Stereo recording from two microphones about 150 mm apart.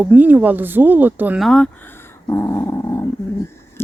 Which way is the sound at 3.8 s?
15° left (ahead or behind).